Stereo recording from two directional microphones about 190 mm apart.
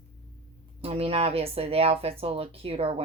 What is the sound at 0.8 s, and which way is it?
Speech, 30° right (ahead or behind).